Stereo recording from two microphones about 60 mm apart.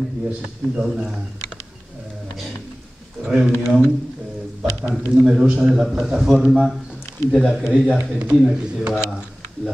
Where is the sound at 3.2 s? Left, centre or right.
Centre.